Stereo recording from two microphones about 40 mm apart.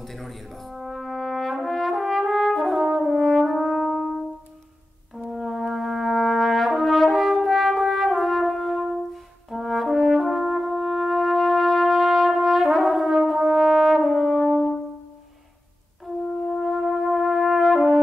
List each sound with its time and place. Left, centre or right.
0.0 s brass instrument: centre
2.8 s french horn: centre
5.3 s brass instrument: centre
16.7 s brass instrument: centre